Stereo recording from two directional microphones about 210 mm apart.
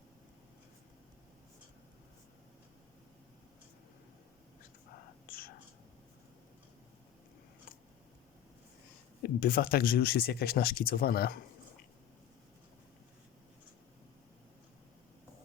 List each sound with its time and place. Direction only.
5.2 s whispering: 45° left (ahead or behind)
9.4 s speech: 45° left (ahead or behind)